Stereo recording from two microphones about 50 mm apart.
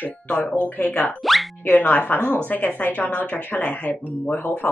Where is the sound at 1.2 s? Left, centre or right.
Centre.